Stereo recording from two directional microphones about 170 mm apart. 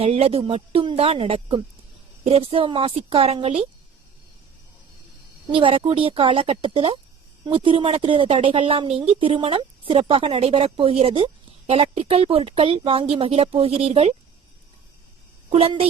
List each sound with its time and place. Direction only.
0.0 s speech: 35° right (ahead or behind)
5.5 s speech: 30° right (ahead or behind)
15.5 s speech: 35° right (ahead or behind)